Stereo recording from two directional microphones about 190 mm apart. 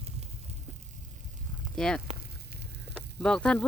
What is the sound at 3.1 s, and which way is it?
Speech, 5° left (ahead or behind).